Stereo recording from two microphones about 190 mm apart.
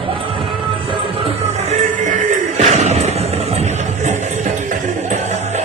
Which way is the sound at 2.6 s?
35° right (ahead or behind).